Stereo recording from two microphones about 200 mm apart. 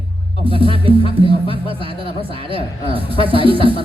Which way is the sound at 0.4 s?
25° right (ahead or behind).